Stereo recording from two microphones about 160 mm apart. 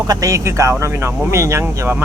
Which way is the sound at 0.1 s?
20° right (ahead or behind).